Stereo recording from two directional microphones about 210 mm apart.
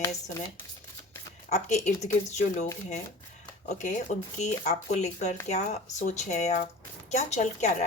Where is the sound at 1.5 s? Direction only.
35° left (ahead or behind).